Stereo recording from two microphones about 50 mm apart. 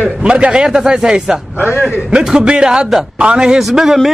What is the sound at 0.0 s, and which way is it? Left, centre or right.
A man's voice, right.